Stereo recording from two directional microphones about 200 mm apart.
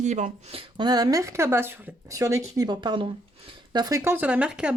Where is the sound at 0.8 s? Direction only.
20° right (ahead or behind).